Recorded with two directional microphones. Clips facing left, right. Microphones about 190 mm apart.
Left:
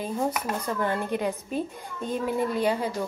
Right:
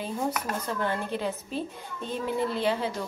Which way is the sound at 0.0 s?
10° left (ahead or behind).